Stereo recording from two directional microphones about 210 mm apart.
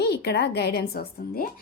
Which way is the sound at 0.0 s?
50° left (ahead or behind).